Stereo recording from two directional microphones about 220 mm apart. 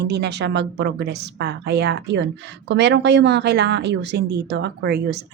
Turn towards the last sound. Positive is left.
turn(degrees=-50)  # may be behind; listen again after turning